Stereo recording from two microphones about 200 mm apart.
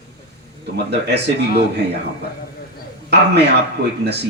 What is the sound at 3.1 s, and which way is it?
Speech, 55° right (ahead or behind).